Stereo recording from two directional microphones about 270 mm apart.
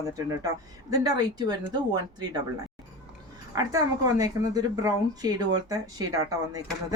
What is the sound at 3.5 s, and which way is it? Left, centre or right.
A woman's voice, centre.